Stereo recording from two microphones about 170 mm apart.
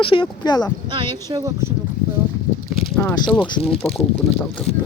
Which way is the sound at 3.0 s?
10° left (ahead or behind).